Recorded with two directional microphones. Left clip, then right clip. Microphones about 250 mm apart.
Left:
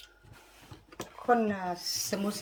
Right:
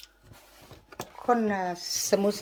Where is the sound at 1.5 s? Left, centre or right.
Centre.